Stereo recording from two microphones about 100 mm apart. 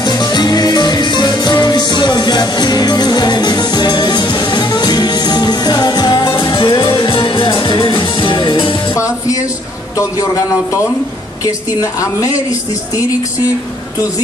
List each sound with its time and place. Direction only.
0.0 s music: 45° left (ahead or behind)
8.9 s music: 30° left (ahead or behind)
9.9 s a woman's voice: 35° left (ahead or behind)